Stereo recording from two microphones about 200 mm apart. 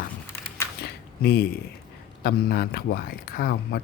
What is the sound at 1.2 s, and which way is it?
A man's voice, 50° left (ahead or behind).